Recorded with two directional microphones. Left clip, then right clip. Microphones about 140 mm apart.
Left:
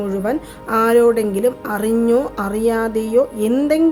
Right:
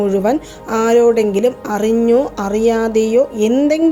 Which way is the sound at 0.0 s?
20° right (ahead or behind).